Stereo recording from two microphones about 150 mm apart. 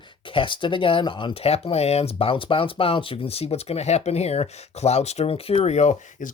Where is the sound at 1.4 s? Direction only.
40° left (ahead or behind).